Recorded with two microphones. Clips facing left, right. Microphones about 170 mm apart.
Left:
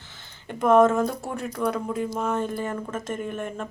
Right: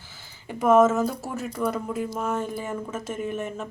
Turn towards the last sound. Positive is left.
turn(degrees=-5)  # may be behind; listen again after turning